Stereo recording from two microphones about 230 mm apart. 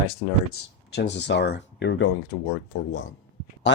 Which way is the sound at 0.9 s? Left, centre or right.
Left.